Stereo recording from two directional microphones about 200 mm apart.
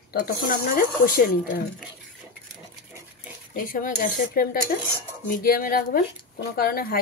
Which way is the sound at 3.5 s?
45° left (ahead or behind).